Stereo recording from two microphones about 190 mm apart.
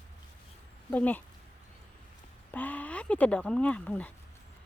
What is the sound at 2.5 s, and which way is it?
Speech, 10° left (ahead or behind).